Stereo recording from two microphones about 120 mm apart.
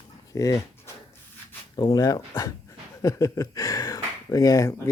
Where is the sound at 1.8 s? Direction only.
35° left (ahead or behind).